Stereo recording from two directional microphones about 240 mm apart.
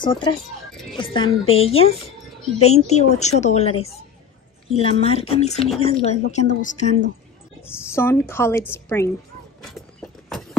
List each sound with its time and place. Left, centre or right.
0.0 s speech: centre
7.6 s a woman's voice: centre
9.6 s horse: centre